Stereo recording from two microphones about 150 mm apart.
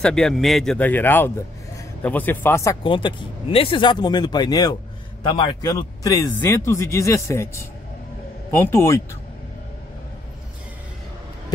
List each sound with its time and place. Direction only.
0.0 s a man's voice: 5° left (ahead or behind)
2.8 s a man's voice: 35° left (ahead or behind); by 9.0 s 20° left (ahead or behind)